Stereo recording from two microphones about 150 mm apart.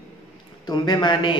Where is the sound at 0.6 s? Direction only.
30° left (ahead or behind).